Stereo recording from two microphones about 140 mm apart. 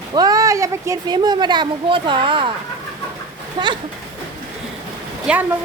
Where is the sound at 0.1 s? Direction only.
30° right (ahead or behind).